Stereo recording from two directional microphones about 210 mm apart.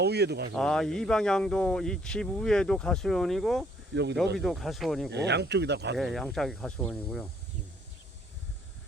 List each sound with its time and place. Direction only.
0.0 s speech: 50° right (ahead or behind)
0.5 s speech: centre (ahead or behind)
3.9 s speech: 55° right (ahead or behind)
4.4 s speech: centre (ahead or behind)
5.1 s speech: 55° right (ahead or behind)
6.0 s speech: centre (ahead or behind)